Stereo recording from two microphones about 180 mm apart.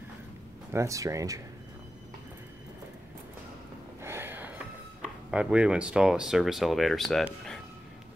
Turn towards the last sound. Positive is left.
turn(degrees=0)  # may be behind; listen again after turning